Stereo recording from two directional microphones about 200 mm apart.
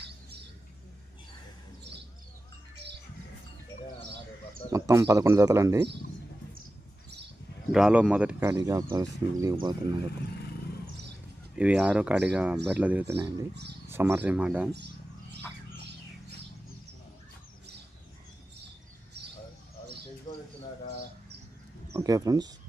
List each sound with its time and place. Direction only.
4.7 s speech: 15° right (ahead or behind)
7.7 s speech: 5° right (ahead or behind)
11.5 s speech: 5° right (ahead or behind)
21.9 s speech: 15° right (ahead or behind)